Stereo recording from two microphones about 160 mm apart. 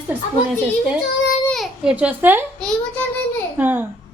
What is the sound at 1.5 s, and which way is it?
Babbling, centre (ahead or behind).